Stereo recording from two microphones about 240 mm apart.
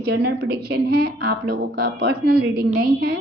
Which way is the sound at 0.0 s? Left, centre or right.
Right.